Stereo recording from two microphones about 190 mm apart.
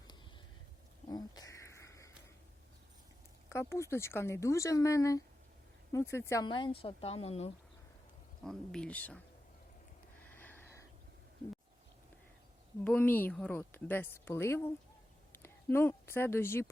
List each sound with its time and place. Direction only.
1.0 s a sound: 20° left (ahead or behind)
3.5 s a woman's voice: 15° left (ahead or behind)
6.5 s a woman's voice: 25° left (ahead or behind)
8.4 s a woman's voice: 5° left (ahead or behind)
10.3 s snort: 10° left (ahead or behind)
12.8 s a woman's voice: 10° left (ahead or behind)